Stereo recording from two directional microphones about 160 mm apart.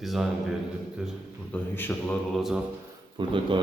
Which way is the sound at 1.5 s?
10° left (ahead or behind).